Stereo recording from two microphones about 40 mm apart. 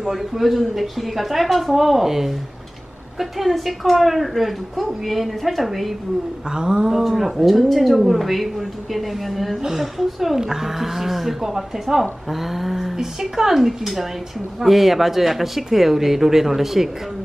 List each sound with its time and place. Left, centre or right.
0.0 s speech: centre
6.5 s a sound: right
6.9 s a woman's voice: centre